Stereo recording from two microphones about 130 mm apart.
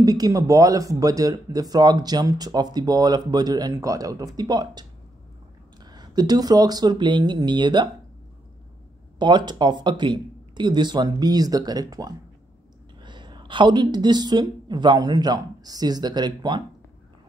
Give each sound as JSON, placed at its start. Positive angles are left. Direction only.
{"t": 0.0, "sound": "speech", "side_deg": -30}
{"t": 9.2, "sound": "a woman's voice", "side_deg": -35}